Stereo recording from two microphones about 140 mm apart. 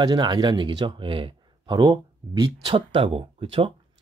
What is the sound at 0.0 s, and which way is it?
Speech, 30° right (ahead or behind).